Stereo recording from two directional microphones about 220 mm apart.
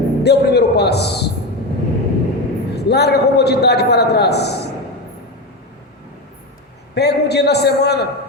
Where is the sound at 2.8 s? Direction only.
50° left (ahead or behind).